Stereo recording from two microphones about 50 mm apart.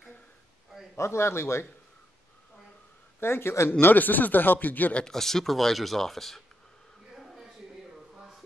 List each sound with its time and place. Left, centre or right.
0.9 s a man's voice: left
3.2 s a man's voice: left
3.8 s speech: left
4.9 s speech: centre
7.2 s a sound: centre